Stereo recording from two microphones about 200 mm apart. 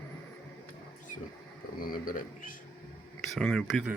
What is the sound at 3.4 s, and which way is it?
Speech, 5° left (ahead or behind).